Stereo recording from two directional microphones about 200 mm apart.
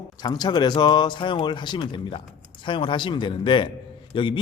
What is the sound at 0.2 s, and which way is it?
A man's voice, 20° left (ahead or behind).